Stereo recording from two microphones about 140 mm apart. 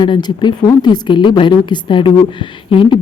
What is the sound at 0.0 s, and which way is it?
A woman's voice, 30° left (ahead or behind).